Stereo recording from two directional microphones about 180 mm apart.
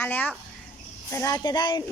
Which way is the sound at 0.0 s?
10° left (ahead or behind).